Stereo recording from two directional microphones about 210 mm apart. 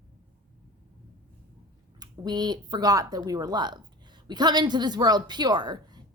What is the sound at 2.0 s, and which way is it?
Speech, 20° right (ahead or behind).